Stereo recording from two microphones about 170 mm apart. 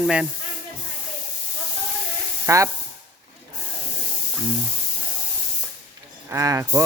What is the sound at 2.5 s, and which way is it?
Speech, 20° right (ahead or behind).